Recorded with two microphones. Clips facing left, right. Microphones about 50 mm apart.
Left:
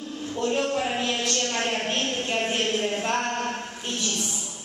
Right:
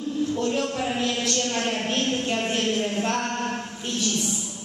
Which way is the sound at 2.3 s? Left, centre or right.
Centre.